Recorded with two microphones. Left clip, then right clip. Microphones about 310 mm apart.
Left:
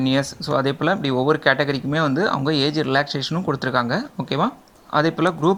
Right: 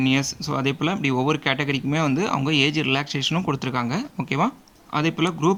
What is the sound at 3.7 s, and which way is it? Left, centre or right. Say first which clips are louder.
Speech: left 5 dB; right.